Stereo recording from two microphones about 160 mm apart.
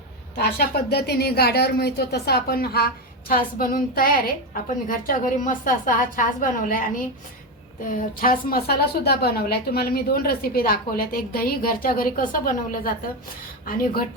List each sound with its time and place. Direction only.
0.3 s a woman's voice: 80° left; by 12.9 s 55° left (ahead or behind)